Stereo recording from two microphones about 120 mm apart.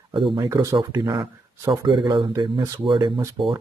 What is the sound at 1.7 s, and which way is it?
Speech, 40° right (ahead or behind).